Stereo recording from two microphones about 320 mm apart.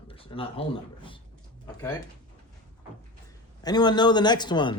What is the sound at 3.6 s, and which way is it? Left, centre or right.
A man's voice, centre.